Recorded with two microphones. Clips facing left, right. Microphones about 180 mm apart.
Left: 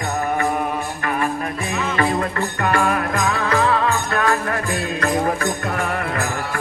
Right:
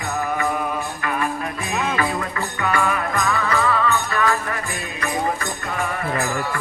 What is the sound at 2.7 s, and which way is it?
Music, 50° left (ahead or behind).